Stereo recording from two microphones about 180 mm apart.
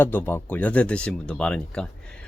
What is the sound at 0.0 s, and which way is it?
Speech, 10° left (ahead or behind).